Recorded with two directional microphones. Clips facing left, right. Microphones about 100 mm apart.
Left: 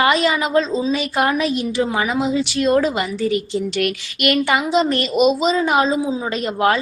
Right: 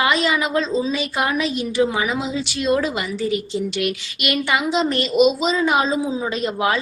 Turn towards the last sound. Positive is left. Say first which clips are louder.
# left 2 dB
turn(degrees=45)  # may be behind; listen again after turning